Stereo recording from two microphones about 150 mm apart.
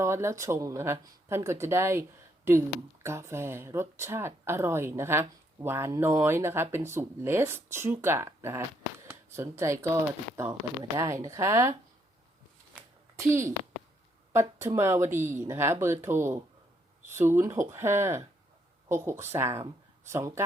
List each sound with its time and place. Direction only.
0.0 s speech: 20° right (ahead or behind)
12.7 s a sound: 15° right (ahead or behind)
14.3 s speech: 20° right (ahead or behind)